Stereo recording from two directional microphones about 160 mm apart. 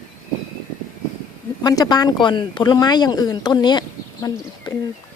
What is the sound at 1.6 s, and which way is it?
Speech, 25° left (ahead or behind).